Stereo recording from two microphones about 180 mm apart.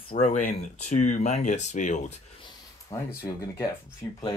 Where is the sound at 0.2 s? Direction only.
40° left (ahead or behind).